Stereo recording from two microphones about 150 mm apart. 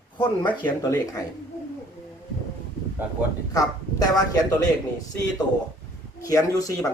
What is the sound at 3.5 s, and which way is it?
Speech, 25° left (ahead or behind).